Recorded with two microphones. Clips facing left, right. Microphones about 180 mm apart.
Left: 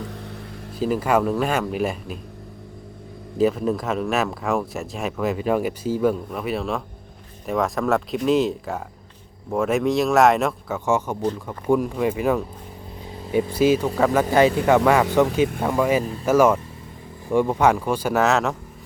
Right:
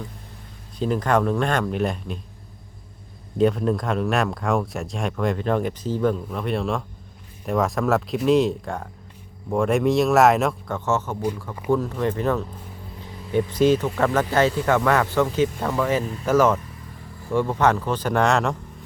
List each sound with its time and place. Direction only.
0.8 s speech: 5° left (ahead or behind)
3.3 s speech: 5° left (ahead or behind)